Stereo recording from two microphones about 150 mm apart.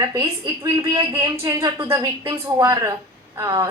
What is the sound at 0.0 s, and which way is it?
A woman's voice, 25° right (ahead or behind).